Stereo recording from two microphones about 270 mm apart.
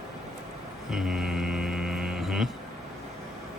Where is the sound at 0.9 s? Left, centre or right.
Centre.